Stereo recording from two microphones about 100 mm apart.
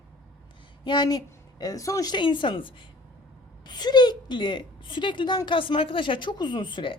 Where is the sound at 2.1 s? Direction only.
55° left (ahead or behind).